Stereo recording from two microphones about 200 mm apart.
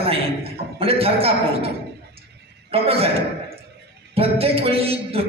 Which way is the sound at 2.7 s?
30° right (ahead or behind).